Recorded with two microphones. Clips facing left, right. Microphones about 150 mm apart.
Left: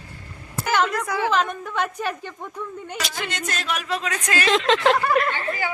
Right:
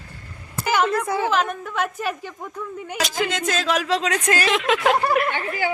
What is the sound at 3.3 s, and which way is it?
Speech, 90° right.